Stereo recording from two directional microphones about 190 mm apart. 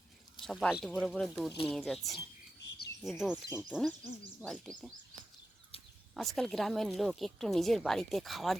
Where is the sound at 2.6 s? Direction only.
65° left (ahead or behind).